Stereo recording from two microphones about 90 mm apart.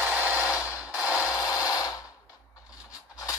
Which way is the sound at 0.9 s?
35° left (ahead or behind).